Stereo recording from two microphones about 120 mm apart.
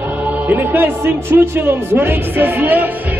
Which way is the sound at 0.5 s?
15° right (ahead or behind).